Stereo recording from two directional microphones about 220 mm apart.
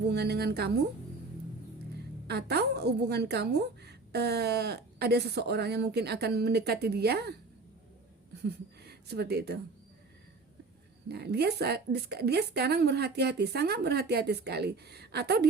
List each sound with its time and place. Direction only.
0.1 s a woman's voice: 50° right (ahead or behind)
2.2 s a woman's voice: 45° right (ahead or behind)
8.4 s speech: 50° right (ahead or behind)
11.1 s a woman's voice: 50° right (ahead or behind)